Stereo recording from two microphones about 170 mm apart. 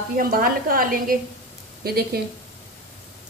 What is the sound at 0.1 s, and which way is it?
A woman's voice, 60° right (ahead or behind).